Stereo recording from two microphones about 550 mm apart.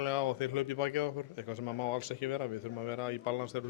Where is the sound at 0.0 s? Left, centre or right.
Left.